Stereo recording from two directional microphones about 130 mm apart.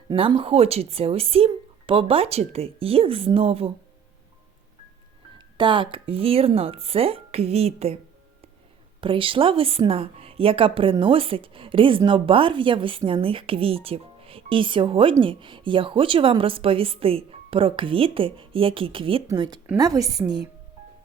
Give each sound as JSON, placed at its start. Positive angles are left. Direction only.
{"t": 0.1, "sound": "a woman's voice", "side_deg": -40}
{"t": 5.5, "sound": "a woman's voice", "side_deg": -40}
{"t": 9.0, "sound": "a woman's voice", "side_deg": -45}